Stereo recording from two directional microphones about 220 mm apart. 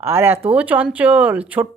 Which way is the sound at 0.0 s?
10° right (ahead or behind).